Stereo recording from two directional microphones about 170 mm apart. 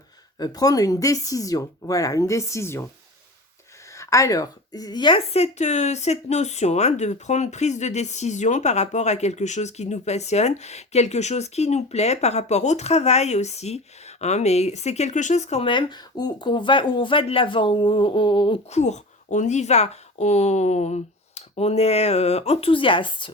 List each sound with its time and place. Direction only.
0.3 s speech: 20° left (ahead or behind)
3.9 s a woman's voice: 20° left (ahead or behind)
18.7 s a woman's voice: 40° left (ahead or behind)